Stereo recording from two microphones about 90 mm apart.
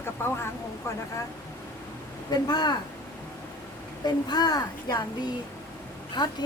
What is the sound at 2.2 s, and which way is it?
Speech, 50° left (ahead or behind).